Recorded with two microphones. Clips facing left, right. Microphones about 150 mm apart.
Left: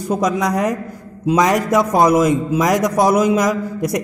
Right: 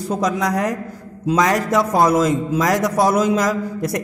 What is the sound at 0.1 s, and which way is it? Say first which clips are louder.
A man's voice: left 2 dB; 20° left (ahead or behind).